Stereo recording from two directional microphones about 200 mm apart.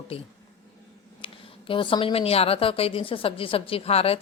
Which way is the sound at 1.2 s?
25° left (ahead or behind).